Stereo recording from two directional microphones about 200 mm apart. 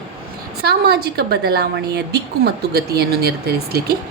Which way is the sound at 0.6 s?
50° right (ahead or behind).